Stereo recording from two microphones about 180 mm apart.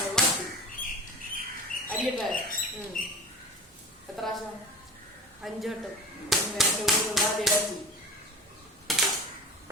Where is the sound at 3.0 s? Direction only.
50° left (ahead or behind).